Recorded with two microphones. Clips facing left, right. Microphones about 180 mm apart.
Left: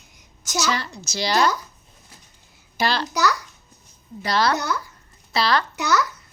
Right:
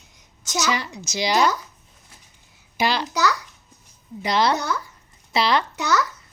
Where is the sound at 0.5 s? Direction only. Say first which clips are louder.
Even; 15° right (ahead or behind).